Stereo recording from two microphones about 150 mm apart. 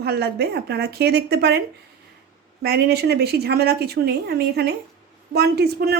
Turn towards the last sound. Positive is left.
turn(degrees=-90)